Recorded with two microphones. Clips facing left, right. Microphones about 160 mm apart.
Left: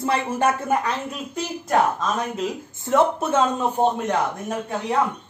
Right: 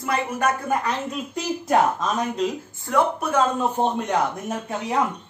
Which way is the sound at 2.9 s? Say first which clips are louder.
Left 2 dB; 25° left (ahead or behind).